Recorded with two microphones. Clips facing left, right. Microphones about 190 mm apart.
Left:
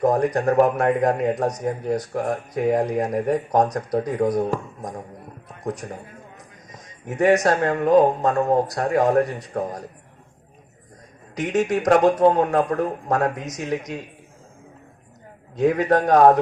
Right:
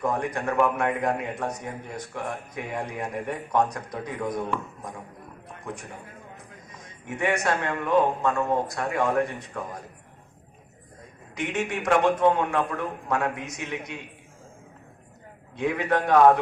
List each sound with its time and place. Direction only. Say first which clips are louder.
0.0 s a man's voice: left 8 dB; 40° left (ahead or behind)
11.3 s a man's voice: left 7 dB; 40° left (ahead or behind)
15.5 s a man's voice: left 7 dB; 40° left (ahead or behind)